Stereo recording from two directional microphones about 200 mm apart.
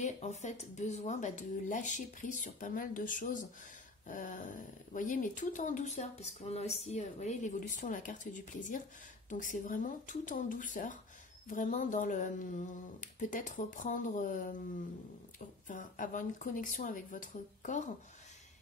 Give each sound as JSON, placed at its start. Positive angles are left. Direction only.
{"t": 0.0, "sound": "speech", "side_deg": 35}
{"t": 15.6, "sound": "speech", "side_deg": 40}